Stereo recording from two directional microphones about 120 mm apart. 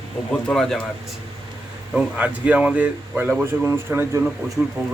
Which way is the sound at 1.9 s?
10° right (ahead or behind).